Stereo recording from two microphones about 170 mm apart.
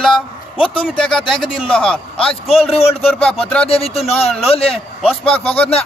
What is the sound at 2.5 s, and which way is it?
A man's voice, 35° left (ahead or behind).